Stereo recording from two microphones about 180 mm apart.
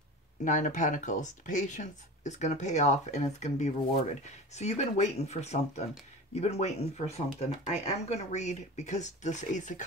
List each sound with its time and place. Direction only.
0.5 s speech: 45° left (ahead or behind)